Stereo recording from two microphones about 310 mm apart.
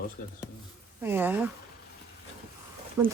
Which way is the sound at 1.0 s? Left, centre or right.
Centre.